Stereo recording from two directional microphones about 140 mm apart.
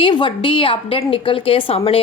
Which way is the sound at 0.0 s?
35° left (ahead or behind).